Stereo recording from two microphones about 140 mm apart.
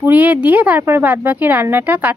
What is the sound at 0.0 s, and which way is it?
Speech, 15° right (ahead or behind).